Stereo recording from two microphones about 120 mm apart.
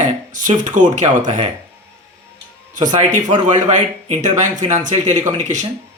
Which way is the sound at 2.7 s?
90° right.